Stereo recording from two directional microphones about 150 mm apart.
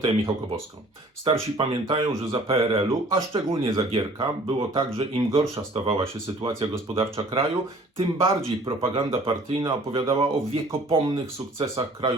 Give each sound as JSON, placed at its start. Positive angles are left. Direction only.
{"t": 1.2, "sound": "speech", "side_deg": -35}